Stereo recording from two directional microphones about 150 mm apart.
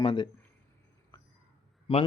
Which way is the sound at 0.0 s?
35° left (ahead or behind).